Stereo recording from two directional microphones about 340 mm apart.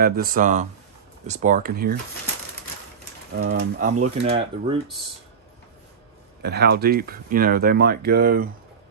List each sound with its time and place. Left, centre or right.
0.0 s speech: right
3.3 s speech: right
6.4 s speech: right